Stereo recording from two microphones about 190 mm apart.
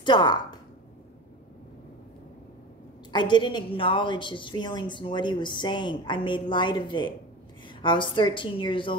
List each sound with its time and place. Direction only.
0.0 s a woman's voice: 25° left (ahead or behind)
3.1 s a woman's voice: 25° left (ahead or behind)